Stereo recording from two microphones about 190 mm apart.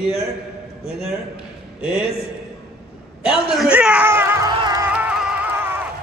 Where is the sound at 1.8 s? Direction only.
5° right (ahead or behind).